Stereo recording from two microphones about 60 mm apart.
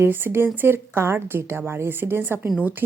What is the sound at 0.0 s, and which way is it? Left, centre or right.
Speech, right.